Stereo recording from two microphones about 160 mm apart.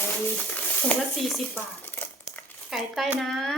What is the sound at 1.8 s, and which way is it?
Crumpling, 10° left (ahead or behind).